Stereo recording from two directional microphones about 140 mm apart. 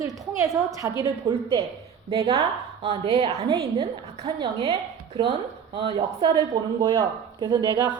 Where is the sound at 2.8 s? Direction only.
40° right (ahead or behind).